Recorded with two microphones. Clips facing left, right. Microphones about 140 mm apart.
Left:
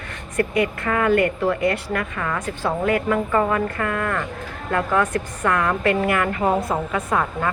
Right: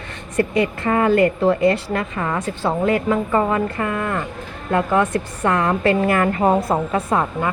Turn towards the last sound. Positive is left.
turn(degrees=-30)  # may be behind; listen again after turning